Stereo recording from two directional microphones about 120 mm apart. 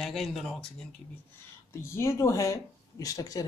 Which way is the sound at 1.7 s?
20° left (ahead or behind).